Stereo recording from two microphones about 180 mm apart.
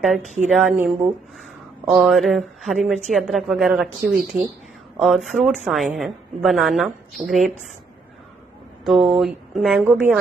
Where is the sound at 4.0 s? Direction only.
60° right (ahead or behind).